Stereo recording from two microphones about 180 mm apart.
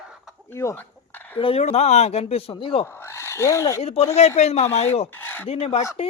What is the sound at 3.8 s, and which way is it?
Speech, 35° left (ahead or behind).